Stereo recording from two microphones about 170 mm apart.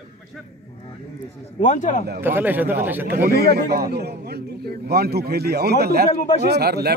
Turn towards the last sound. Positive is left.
turn(degrees=-70)  # may be behind; listen again after turning